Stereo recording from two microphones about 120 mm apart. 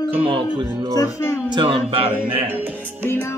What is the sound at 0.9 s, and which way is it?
Speech, 30° left (ahead or behind).